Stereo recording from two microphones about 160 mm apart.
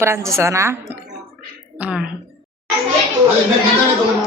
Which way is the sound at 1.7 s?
5° right (ahead or behind).